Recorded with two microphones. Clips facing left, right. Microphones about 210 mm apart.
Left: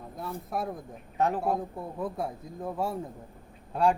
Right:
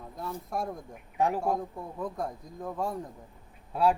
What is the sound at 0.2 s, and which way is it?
Speech, centre (ahead or behind).